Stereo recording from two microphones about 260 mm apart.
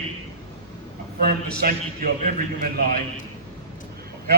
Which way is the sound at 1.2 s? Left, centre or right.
Right.